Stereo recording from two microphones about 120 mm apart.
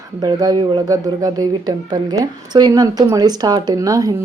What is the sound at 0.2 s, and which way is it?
Speech, 30° right (ahead or behind).